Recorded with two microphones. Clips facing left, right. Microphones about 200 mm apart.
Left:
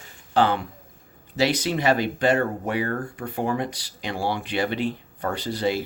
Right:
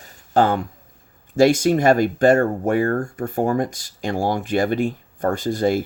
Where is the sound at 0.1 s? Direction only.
45° right (ahead or behind).